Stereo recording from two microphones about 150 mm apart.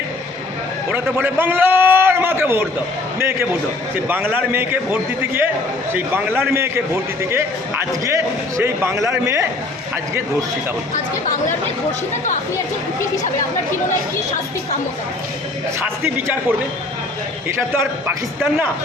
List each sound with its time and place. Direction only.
0.9 s a man's voice: 15° right (ahead or behind)
4.1 s a man's voice: 15° right (ahead or behind)
17.7 s a man's voice: 15° right (ahead or behind)